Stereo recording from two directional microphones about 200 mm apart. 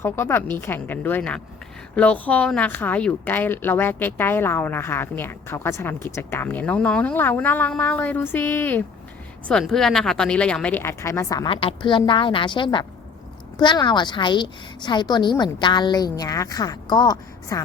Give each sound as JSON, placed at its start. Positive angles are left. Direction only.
{"t": 0.0, "sound": "a woman's voice", "side_deg": 10}